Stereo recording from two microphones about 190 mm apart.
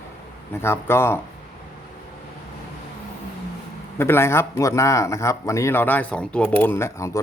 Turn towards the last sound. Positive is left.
turn(degrees=15)  # may be behind; listen again after turning